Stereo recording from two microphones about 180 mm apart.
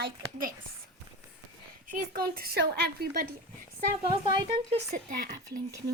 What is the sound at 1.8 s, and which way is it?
A woman's voice, 55° right (ahead or behind).